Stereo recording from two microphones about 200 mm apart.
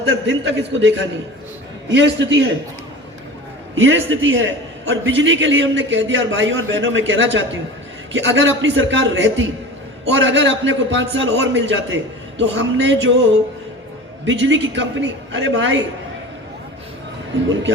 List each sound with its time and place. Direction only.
0.1 s a man's voice: 65° right (ahead or behind)
3.8 s a man's voice: 70° right (ahead or behind)
14.3 s a man's voice: 65° right (ahead or behind)